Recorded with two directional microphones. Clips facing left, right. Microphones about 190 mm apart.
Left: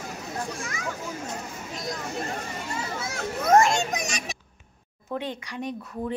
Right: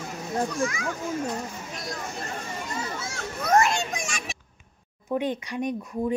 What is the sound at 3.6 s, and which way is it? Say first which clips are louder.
Speech: left 2 dB; 45° left (ahead or behind).